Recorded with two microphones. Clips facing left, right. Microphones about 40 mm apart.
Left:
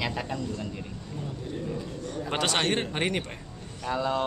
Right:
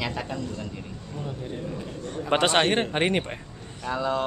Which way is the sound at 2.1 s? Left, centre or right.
Centre.